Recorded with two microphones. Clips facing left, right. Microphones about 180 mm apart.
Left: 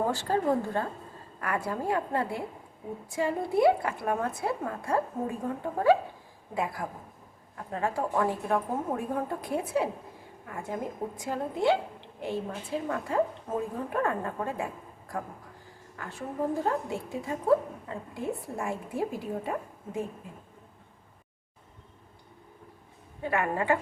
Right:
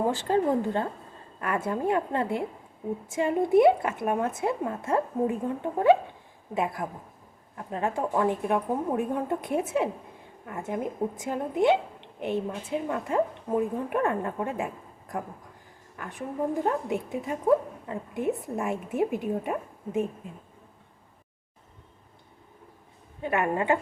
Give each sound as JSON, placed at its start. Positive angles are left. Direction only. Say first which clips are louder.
{"t": 0.1, "sound": "a woman's voice", "louder": "right 2 dB", "side_deg": -20}
{"t": 16.0, "sound": "a woman's voice", "louder": "right 2 dB", "side_deg": -20}
{"t": 23.2, "sound": "a woman's voice", "louder": "right 2 dB", "side_deg": -20}